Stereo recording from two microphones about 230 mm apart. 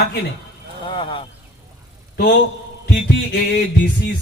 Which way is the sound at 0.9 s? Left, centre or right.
Left.